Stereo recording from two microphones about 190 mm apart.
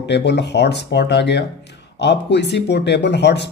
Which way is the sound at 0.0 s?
65° left (ahead or behind).